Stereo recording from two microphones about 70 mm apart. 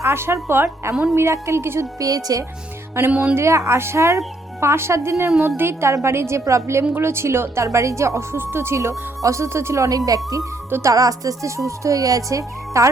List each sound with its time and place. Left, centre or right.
0.0 s speech: right
2.0 s speech: right
3.0 s speech: right